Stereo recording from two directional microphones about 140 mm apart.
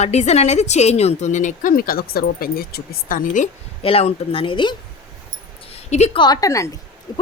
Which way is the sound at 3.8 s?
45° left (ahead or behind).